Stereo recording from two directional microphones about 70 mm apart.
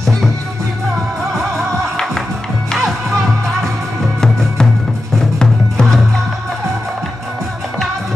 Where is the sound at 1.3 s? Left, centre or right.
Centre.